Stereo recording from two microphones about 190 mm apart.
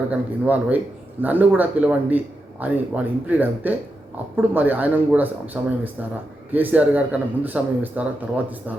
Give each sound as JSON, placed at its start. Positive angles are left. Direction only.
{"t": 0.1, "sound": "a man's voice", "side_deg": -10}